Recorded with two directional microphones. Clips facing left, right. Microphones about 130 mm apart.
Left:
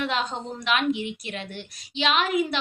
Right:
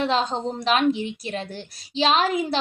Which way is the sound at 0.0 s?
30° right (ahead or behind).